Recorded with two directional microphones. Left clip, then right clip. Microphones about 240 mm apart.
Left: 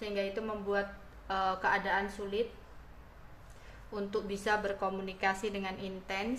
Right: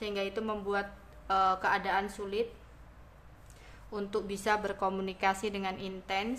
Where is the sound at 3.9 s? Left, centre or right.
Centre.